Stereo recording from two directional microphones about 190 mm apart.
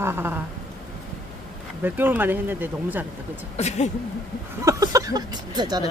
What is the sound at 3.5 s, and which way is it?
Speech, 35° left (ahead or behind).